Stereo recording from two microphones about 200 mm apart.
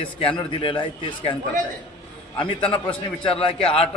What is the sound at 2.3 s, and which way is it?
Speech, 25° left (ahead or behind).